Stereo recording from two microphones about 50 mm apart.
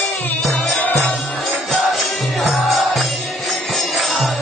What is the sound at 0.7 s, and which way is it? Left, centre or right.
Music, left.